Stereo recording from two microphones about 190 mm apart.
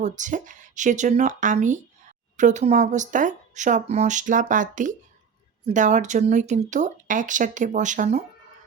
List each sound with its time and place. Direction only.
0.0 s speech: 40° right (ahead or behind)